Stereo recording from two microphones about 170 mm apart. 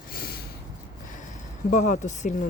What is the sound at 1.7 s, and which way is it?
Speech, 45° left (ahead or behind).